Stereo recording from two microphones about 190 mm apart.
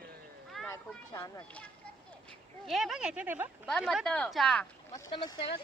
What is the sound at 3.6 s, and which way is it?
Speech, centre (ahead or behind).